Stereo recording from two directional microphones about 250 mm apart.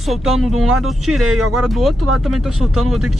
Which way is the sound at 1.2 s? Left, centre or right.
Right.